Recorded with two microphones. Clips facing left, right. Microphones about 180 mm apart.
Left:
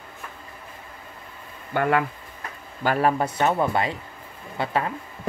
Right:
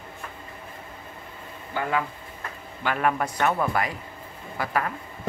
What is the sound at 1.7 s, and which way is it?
Speech, 60° left (ahead or behind).